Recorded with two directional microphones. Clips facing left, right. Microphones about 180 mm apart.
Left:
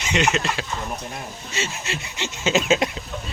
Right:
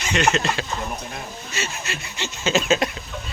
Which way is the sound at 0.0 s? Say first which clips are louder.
Right 1 dB; 20° left (ahead or behind).